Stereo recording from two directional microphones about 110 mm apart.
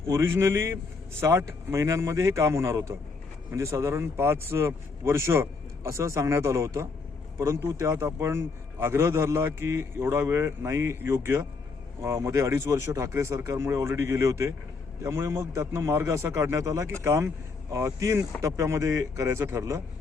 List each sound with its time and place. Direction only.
0.1 s a man's voice: 25° right (ahead or behind)